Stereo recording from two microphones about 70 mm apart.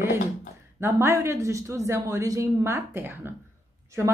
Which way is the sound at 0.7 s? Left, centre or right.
Right.